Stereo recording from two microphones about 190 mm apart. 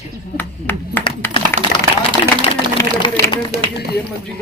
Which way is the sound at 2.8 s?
25° left (ahead or behind).